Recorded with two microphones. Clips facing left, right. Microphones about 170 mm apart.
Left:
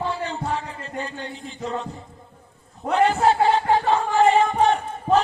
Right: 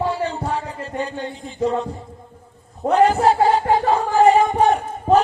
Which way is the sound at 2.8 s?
40° right (ahead or behind).